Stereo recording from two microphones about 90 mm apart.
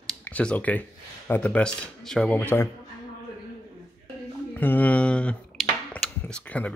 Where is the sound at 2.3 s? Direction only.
20° left (ahead or behind).